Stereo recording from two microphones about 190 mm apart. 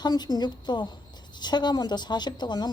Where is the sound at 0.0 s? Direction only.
20° left (ahead or behind).